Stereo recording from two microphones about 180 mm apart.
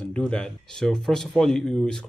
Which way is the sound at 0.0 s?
5° left (ahead or behind).